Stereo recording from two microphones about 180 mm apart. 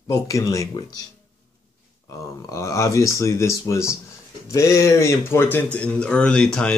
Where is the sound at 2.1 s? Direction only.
15° left (ahead or behind).